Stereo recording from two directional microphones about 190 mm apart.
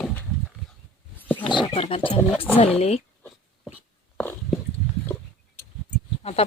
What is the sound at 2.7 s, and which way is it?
Speech, 35° left (ahead or behind).